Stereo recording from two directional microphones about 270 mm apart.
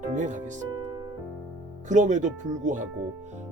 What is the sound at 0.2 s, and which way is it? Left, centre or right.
Speech, right.